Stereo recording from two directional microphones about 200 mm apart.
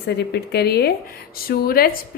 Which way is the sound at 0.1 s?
55° left (ahead or behind).